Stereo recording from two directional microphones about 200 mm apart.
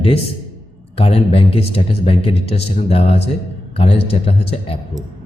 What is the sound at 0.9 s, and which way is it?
A man's voice, 30° left (ahead or behind).